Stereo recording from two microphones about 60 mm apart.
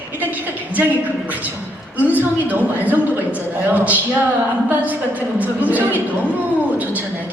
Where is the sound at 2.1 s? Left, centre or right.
Right.